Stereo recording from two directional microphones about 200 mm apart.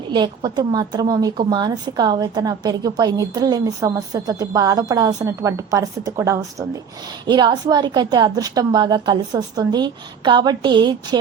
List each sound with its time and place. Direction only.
0.1 s a woman's voice: 20° right (ahead or behind)